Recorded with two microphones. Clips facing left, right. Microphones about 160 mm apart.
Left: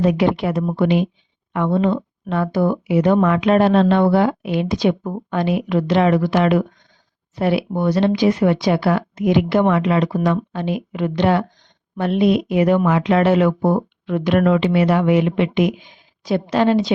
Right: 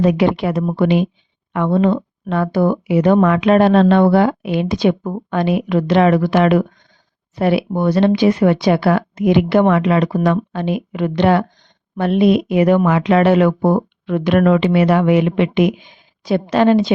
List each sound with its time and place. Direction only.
0.0 s speech: 80° right; by 16.9 s 60° right (ahead or behind)